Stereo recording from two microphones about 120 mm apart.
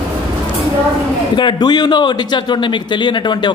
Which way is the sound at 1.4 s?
40° left (ahead or behind).